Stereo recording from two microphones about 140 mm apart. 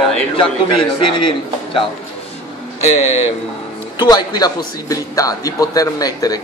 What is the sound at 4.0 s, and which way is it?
A man's voice, 30° left (ahead or behind).